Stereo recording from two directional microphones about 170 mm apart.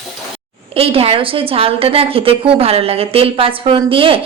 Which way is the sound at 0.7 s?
35° right (ahead or behind).